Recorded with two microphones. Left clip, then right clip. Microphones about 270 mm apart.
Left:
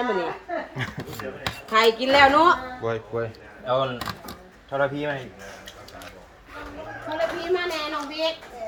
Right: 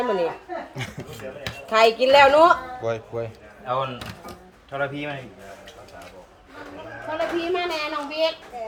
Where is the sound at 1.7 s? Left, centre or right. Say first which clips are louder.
Right 3 dB; right.